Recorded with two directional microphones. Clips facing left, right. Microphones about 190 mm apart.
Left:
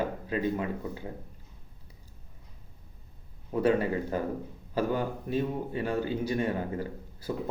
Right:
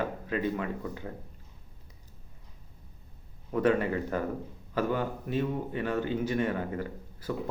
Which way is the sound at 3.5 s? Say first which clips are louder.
Even; 30° left (ahead or behind).